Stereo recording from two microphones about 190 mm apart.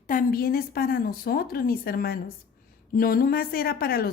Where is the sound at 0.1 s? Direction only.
45° left (ahead or behind).